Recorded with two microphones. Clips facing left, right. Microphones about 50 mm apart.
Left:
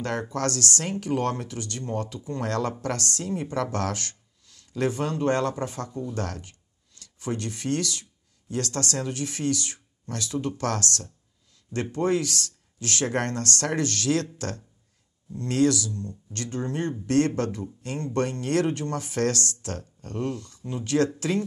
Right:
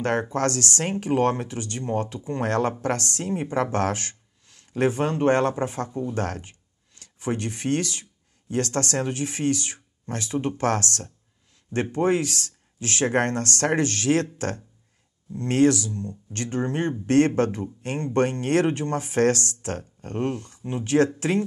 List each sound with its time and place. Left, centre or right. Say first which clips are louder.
0.0 s speech: right 4 dB; right